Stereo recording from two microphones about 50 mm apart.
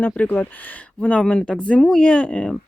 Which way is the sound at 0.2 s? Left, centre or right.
Left.